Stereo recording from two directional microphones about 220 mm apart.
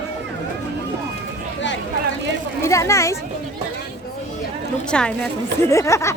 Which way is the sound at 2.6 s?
15° left (ahead or behind).